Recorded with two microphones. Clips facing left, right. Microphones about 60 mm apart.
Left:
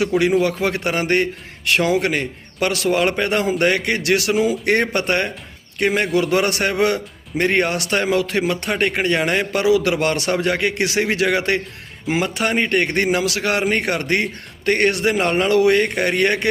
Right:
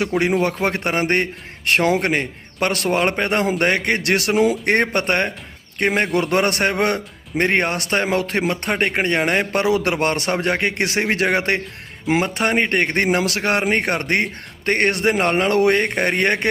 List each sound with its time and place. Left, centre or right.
0.0 s a man's voice: right